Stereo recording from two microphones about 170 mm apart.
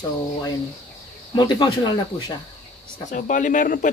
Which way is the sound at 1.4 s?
30° left (ahead or behind).